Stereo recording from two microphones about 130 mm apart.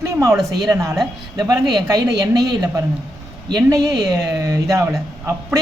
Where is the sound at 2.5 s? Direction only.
30° right (ahead or behind).